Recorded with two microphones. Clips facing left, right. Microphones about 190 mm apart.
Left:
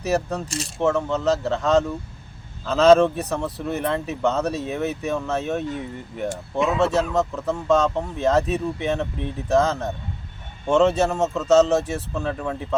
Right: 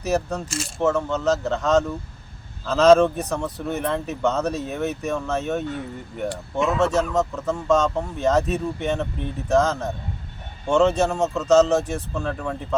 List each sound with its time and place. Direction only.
0.0 s speech: centre (ahead or behind)
0.4 s speech: 35° left (ahead or behind)
0.8 s speech: centre (ahead or behind)
6.7 s speech: centre (ahead or behind)